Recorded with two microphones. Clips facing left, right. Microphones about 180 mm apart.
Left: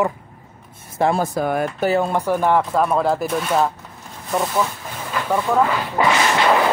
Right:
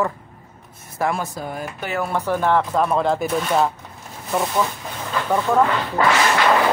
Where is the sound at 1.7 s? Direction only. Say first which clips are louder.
Left 7 dB; 40° left (ahead or behind).